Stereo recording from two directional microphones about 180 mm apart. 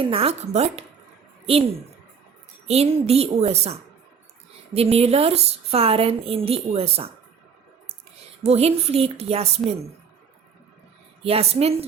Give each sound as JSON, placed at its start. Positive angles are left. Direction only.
{"t": 0.0, "sound": "a woman's voice", "side_deg": -30}
{"t": 2.6, "sound": "a woman's voice", "side_deg": -35}
{"t": 8.4, "sound": "a woman's voice", "side_deg": -35}
{"t": 11.2, "sound": "a woman's voice", "side_deg": -35}